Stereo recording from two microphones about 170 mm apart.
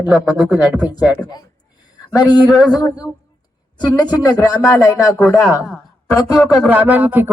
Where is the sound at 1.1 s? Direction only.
25° left (ahead or behind).